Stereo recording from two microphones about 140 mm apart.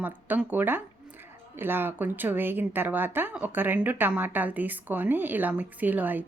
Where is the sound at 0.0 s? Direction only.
10° right (ahead or behind).